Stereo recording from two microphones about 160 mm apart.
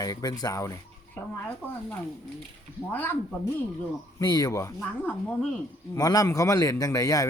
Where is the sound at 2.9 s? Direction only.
10° left (ahead or behind).